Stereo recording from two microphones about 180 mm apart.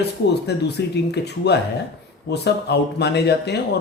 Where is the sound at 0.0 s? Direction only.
65° left (ahead or behind).